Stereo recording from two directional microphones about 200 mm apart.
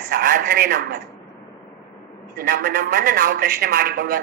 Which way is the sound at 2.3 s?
50° right (ahead or behind).